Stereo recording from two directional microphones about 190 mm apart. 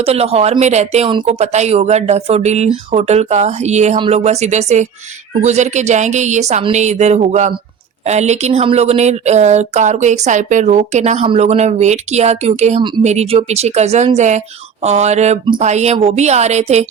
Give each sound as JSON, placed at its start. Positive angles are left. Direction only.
{"t": 0.0, "sound": "speech", "side_deg": -30}